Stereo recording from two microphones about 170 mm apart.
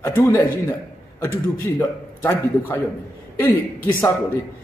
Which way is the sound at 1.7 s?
15° left (ahead or behind).